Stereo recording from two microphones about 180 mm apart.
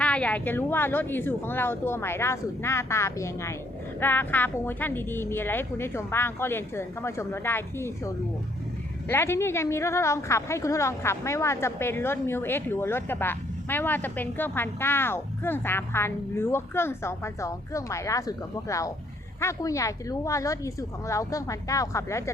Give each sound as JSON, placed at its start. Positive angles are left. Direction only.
{"t": 0.0, "sound": "a woman's voice", "side_deg": 5}